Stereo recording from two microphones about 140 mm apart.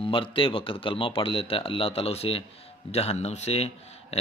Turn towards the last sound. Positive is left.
turn(degrees=45)  # may be behind; listen again after turning